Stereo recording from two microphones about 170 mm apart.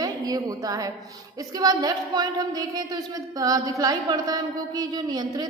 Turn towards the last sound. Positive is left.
turn(degrees=-25)  # may be behind; listen again after turning